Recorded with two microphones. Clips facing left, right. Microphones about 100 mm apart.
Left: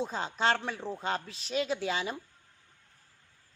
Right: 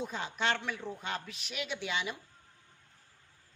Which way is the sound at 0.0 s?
30° left (ahead or behind).